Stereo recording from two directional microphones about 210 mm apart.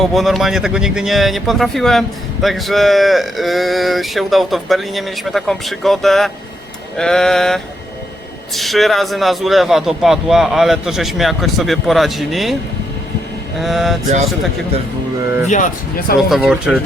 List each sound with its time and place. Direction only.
0.0 s speech: centre (ahead or behind)
13.6 s speech: centre (ahead or behind)
15.4 s speech: 35° left (ahead or behind)
16.3 s speech: 5° right (ahead or behind)